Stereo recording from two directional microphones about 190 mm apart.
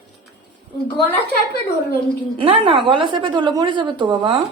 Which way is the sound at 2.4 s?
30° right (ahead or behind).